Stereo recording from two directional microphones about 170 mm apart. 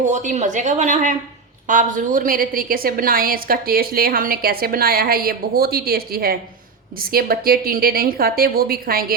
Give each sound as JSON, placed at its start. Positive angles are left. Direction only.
{"t": 0.0, "sound": "a woman's voice", "side_deg": -45}